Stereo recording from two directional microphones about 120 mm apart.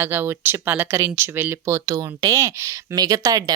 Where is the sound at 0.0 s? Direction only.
20° right (ahead or behind).